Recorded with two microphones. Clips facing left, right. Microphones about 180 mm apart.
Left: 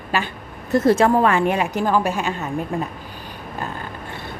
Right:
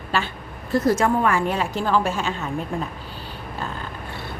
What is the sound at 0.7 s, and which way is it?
Speech, 25° left (ahead or behind).